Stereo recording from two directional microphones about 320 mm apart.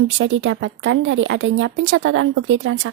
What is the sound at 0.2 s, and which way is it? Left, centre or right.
A woman's voice, right.